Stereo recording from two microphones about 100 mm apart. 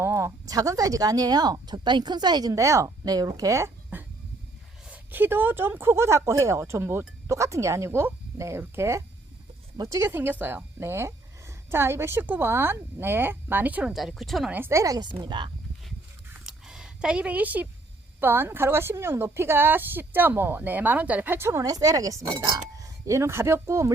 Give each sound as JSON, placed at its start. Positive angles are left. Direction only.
{"t": 0.0, "sound": "speech", "side_deg": -30}
{"t": 3.9, "sound": "cough", "side_deg": -20}
{"t": 4.9, "sound": "speech", "side_deg": -20}
{"t": 13.9, "sound": "speech", "side_deg": 0}
{"t": 14.5, "sound": "speech", "side_deg": -25}
{"t": 15.2, "sound": "speech", "side_deg": -45}
{"t": 16.5, "sound": "a sound", "side_deg": -5}
{"t": 18.2, "sound": "speech", "side_deg": -20}
{"t": 21.6, "sound": "speech", "side_deg": -40}